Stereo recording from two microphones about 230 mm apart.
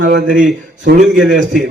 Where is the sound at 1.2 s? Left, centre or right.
Centre.